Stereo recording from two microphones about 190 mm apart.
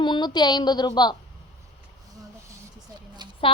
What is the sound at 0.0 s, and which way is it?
A woman's voice, 25° left (ahead or behind).